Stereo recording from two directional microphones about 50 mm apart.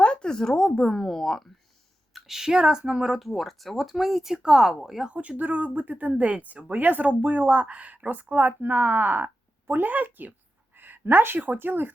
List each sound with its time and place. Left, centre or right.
0.0 s a sound: centre
0.8 s speech: centre
2.1 s speech: centre
3.2 s speech: centre
5.4 s a woman's voice: right